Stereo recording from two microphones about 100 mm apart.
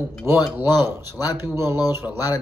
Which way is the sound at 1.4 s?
25° right (ahead or behind).